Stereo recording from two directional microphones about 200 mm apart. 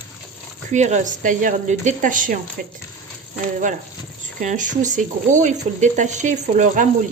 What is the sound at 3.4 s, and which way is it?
Speech, 40° right (ahead or behind).